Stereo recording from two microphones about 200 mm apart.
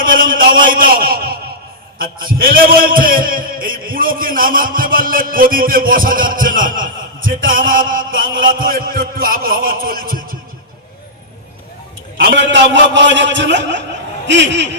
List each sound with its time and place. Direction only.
0.0 s a sound: 45° right (ahead or behind)
2.0 s a man's voice: 45° right (ahead or behind)
7.2 s chant: 75° right (ahead or behind)
7.7 s a man's voice: 45° right (ahead or behind)
8.1 s chant: 75° right (ahead or behind)
8.5 s a man's voice: 45° right (ahead or behind)
12.1 s a man's voice: 60° right (ahead or behind)